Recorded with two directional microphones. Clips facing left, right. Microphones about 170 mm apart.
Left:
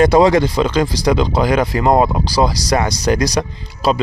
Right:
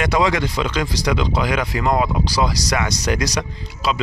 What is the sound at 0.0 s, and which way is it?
Speech, 35° left (ahead or behind).